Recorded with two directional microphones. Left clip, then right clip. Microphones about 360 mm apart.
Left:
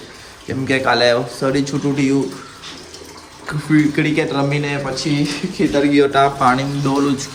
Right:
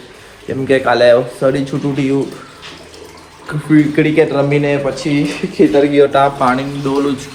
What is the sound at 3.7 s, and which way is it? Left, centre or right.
A man's voice, centre.